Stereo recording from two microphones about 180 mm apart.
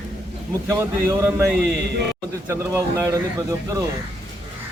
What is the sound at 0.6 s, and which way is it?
Speech, 15° right (ahead or behind).